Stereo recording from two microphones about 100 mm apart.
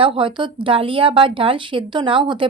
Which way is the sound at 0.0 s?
60° right (ahead or behind).